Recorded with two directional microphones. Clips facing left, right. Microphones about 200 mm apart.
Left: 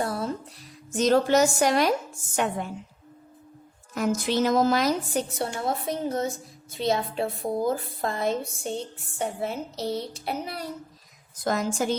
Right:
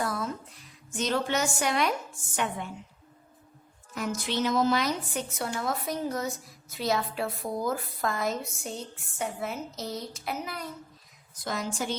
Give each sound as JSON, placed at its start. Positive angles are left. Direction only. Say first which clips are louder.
{"t": 0.0, "sound": "music", "louder": "left 3 dB", "side_deg": 30}
{"t": 0.9, "sound": "a woman's voice", "louder": "left 8 dB", "side_deg": 40}
{"t": 3.9, "sound": "a woman's voice", "louder": "left 6 dB", "side_deg": 45}
{"t": 5.4, "sound": "a woman's voice", "louder": "left 3 dB", "side_deg": 30}
{"t": 11.4, "sound": "a woman's voice", "louder": "left 6 dB", "side_deg": 45}